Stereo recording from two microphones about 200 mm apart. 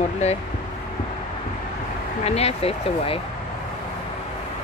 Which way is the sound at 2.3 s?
30° left (ahead or behind).